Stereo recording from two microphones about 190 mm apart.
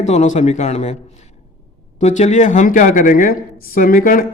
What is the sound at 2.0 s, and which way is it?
A man's voice, 40° left (ahead or behind).